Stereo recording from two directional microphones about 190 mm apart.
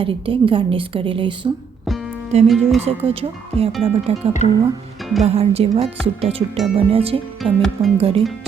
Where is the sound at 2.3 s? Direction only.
35° right (ahead or behind).